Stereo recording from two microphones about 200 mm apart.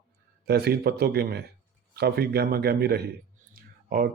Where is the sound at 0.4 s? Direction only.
55° right (ahead or behind).